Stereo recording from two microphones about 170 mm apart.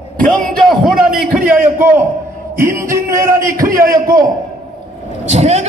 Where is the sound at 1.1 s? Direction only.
60° right (ahead or behind).